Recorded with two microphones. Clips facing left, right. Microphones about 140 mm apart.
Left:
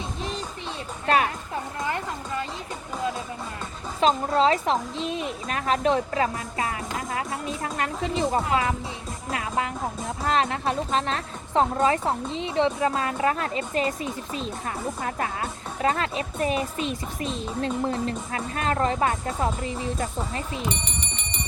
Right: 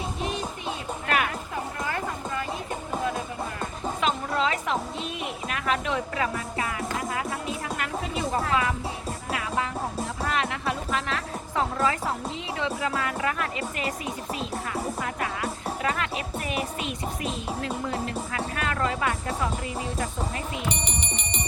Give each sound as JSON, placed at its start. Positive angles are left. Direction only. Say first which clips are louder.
{"t": 1.0, "sound": "a sound", "louder": "left 5 dB", "side_deg": 30}
{"t": 4.0, "sound": "a woman's voice", "louder": "left 6 dB", "side_deg": 35}
{"t": 7.1, "sound": "music", "louder": "left 1 dB", "side_deg": 30}
{"t": 10.2, "sound": "a woman's voice", "louder": "left 5 dB", "side_deg": 30}
{"t": 20.7, "sound": "music", "louder": "even", "side_deg": -15}